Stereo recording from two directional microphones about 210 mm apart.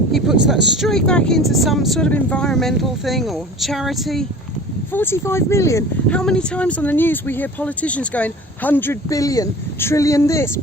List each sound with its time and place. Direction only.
0.1 s speech: centre (ahead or behind)
4.9 s speech: 10° left (ahead or behind)